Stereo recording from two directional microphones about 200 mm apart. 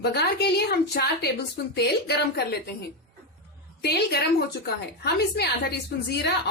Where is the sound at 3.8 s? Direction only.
55° left (ahead or behind).